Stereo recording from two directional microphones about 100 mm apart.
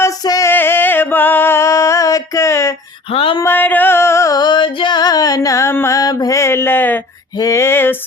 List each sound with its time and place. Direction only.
0.2 s music: 40° left (ahead or behind)
0.4 s music: 20° left (ahead or behind)
3.1 s a sound: 65° left (ahead or behind)
3.4 s music: 20° left (ahead or behind)
6.0 s mantra: 40° left (ahead or behind); by 7.0 s 20° left (ahead or behind)
7.3 s a sound: 35° left (ahead or behind)